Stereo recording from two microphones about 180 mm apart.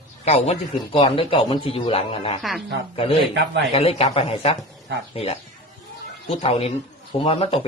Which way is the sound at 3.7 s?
35° left (ahead or behind).